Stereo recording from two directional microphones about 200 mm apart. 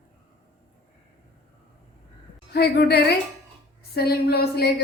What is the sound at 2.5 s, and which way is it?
A woman's voice, 55° left (ahead or behind).